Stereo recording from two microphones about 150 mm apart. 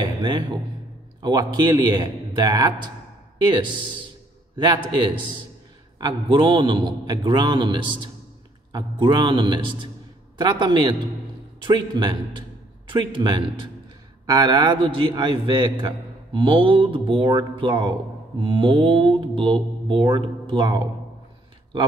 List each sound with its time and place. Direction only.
0.0 s a man's voice: 30° right (ahead or behind)
4.9 s speech: 30° right (ahead or behind)
9.0 s a man's voice: 30° right (ahead or behind)